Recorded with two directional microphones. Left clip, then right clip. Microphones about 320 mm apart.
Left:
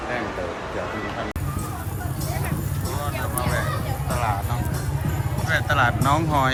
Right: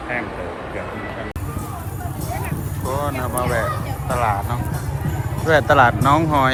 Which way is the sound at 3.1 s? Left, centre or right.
Centre.